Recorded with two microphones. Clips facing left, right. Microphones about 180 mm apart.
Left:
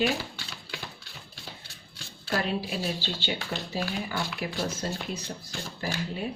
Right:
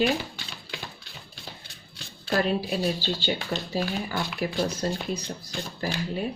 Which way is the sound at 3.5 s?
40° right (ahead or behind).